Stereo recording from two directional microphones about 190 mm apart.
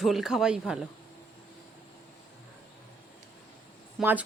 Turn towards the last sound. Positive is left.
turn(degrees=-10)  # may be behind; listen again after turning